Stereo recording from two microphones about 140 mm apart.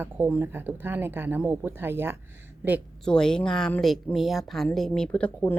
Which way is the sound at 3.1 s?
5° left (ahead or behind).